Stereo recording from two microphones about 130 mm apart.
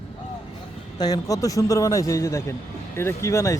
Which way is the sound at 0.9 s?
30° left (ahead or behind).